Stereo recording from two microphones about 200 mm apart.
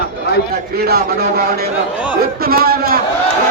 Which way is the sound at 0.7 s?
50° right (ahead or behind).